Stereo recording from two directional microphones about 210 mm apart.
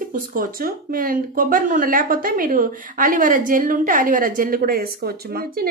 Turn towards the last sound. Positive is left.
turn(degrees=-45)  # may be behind; listen again after turning